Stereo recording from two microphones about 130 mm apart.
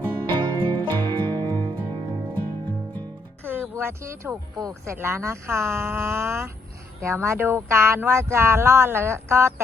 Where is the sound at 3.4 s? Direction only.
15° right (ahead or behind).